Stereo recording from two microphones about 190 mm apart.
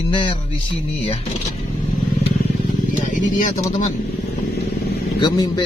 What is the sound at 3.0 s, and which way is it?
Speech, 40° left (ahead or behind).